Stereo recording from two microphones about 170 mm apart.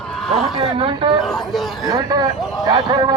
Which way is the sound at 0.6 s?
30° right (ahead or behind).